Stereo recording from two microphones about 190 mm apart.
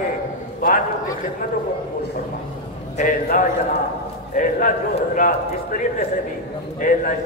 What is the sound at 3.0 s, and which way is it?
A man's voice, 45° left (ahead or behind).